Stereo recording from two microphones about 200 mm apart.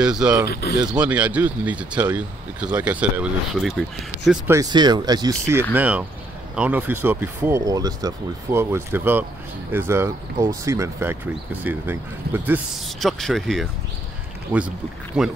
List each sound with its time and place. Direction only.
0.0 s speech: 5° right (ahead or behind)
0.5 s speech: 50° left (ahead or behind)
0.7 s speech: 5° right (ahead or behind)
4.5 s speech: 20° right (ahead or behind); by 13.7 s centre (ahead or behind)
14.5 s speech: 20° right (ahead or behind)